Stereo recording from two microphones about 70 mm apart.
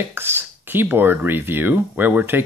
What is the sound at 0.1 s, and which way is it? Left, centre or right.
Speech, right.